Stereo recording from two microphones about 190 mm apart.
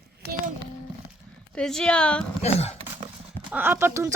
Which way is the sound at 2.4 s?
35° left (ahead or behind).